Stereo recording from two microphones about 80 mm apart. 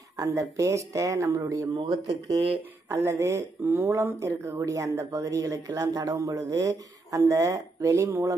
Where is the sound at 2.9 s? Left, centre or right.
Right.